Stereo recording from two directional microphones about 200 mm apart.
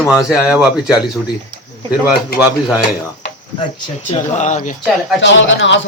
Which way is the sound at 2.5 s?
10° right (ahead or behind).